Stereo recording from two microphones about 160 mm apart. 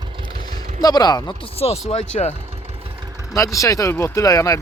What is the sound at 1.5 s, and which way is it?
Speech, 40° left (ahead or behind).